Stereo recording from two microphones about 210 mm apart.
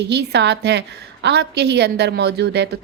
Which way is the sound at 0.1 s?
55° right (ahead or behind).